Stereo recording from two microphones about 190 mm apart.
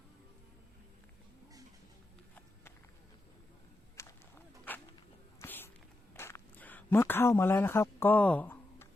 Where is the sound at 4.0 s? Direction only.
10° left (ahead or behind).